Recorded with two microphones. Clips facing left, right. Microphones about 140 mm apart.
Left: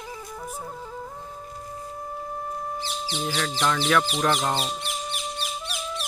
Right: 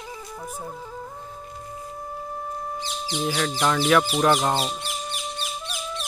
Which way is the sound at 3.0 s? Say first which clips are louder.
Right 4 dB; 10° right (ahead or behind).